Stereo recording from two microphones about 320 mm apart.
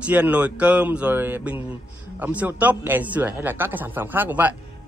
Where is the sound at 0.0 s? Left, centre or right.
Centre.